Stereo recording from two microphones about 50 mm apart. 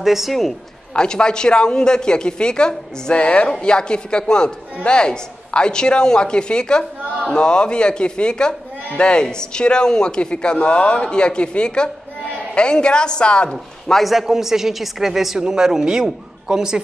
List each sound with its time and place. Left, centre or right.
0.0 s a woman's voice: centre
0.9 s a woman's voice: centre
13.5 s a man's voice: centre
14.0 s a woman's voice: centre